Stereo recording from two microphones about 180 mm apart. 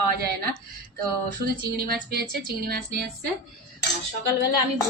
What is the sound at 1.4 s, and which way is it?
Speech, 60° right (ahead or behind).